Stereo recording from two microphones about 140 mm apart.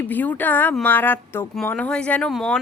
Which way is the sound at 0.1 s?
10° left (ahead or behind).